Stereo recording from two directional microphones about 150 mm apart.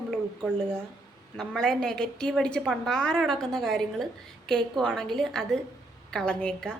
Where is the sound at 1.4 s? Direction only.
5° left (ahead or behind).